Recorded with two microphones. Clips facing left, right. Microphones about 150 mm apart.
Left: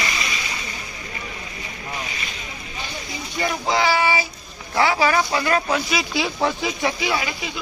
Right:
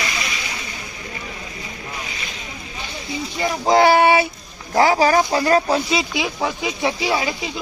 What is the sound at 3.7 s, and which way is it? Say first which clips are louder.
Speech: right 7 dB; 50° right (ahead or behind).